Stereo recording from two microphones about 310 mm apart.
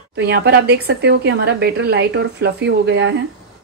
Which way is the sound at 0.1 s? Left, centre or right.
Right.